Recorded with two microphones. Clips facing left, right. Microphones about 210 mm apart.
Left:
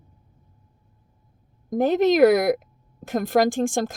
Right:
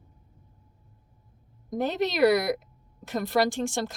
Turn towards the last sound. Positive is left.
turn(degrees=50)  # may be behind; listen again after turning